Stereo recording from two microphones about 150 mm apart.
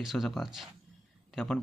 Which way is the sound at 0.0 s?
Centre (ahead or behind).